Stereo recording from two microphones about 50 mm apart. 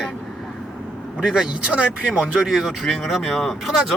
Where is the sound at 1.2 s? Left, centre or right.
Centre.